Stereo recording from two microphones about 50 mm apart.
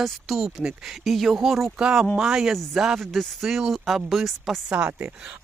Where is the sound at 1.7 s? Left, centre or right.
Centre.